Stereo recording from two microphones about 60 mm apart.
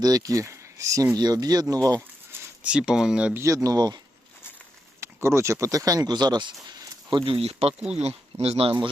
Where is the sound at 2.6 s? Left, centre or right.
Centre.